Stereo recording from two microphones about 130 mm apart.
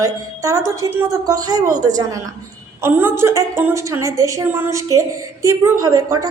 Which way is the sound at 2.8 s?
20° right (ahead or behind).